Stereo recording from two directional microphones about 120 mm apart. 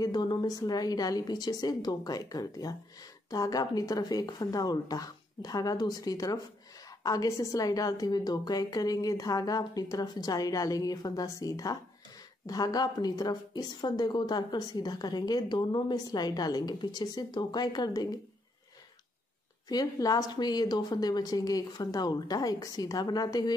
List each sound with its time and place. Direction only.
0.0 s speech: 35° left (ahead or behind)
19.7 s speech: 30° left (ahead or behind)